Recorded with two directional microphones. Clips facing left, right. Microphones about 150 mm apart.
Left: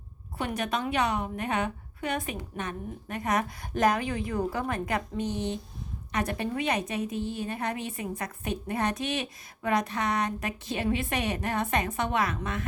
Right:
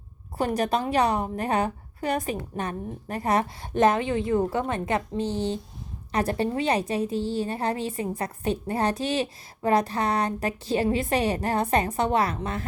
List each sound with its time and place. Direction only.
0.3 s a woman's voice: 35° right (ahead or behind)